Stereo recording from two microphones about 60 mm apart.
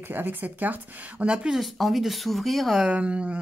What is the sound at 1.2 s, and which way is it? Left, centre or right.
Speech, centre.